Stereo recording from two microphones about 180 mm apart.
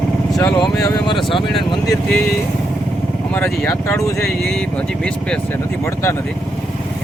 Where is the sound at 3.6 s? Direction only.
15° left (ahead or behind).